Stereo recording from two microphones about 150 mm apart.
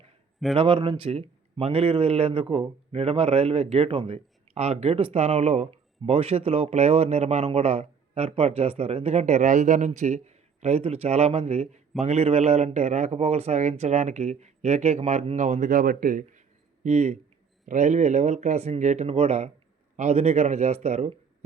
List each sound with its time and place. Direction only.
0.5 s speech: 35° right (ahead or behind); by 16.4 s 65° right (ahead or behind)
16.8 s speech: 45° right (ahead or behind)